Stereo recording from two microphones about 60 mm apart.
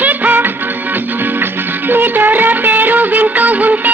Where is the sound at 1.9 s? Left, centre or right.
Right.